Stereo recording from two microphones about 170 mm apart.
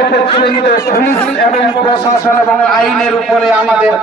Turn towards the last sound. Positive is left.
turn(degrees=-5)  # may be behind; listen again after turning